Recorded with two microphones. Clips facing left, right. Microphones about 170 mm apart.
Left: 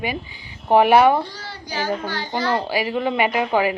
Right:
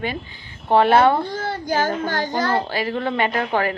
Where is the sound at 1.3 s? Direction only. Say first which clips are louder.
Right 8 dB; 50° right (ahead or behind).